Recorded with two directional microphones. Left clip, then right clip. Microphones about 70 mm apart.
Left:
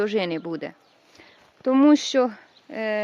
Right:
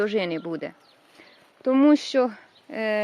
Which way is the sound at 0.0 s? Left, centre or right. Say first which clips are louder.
Left 1 dB; left.